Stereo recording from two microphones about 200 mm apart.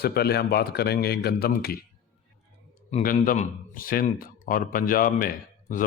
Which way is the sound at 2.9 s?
45° left (ahead or behind).